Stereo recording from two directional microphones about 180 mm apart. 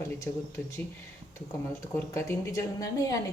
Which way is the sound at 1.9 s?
15° left (ahead or behind).